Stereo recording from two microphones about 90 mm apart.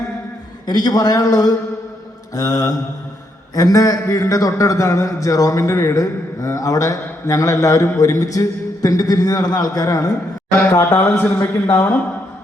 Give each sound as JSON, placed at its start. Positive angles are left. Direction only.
{"t": 0.7, "sound": "a man's voice", "side_deg": 50}